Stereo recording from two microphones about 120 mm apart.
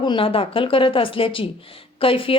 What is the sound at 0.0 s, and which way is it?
Speech, 45° left (ahead or behind).